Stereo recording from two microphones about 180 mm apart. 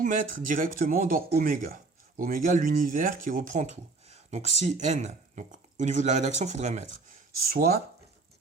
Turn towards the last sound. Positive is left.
turn(degrees=-55)  # may be behind; listen again after turning